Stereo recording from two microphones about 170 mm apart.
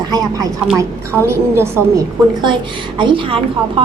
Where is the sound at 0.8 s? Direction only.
15° right (ahead or behind).